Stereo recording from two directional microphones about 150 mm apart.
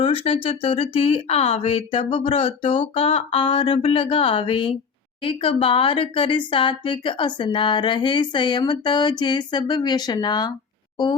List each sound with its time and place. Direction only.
0.0 s speech: 40° left (ahead or behind)